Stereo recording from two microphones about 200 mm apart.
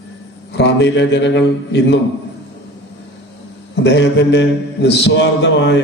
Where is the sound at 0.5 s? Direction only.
60° left (ahead or behind).